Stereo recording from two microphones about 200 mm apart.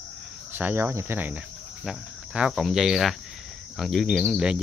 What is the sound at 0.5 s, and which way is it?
Cricket, 10° right (ahead or behind).